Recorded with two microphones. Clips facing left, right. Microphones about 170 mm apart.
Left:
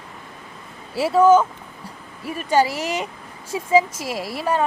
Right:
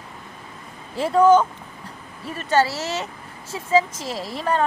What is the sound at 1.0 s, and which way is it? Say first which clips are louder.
Speech: left 1 dB; 5° left (ahead or behind).